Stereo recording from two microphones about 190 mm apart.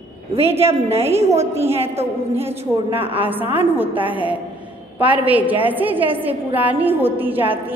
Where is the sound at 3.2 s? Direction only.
10° right (ahead or behind).